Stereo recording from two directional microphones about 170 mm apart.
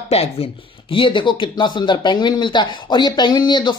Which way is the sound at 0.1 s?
40° left (ahead or behind).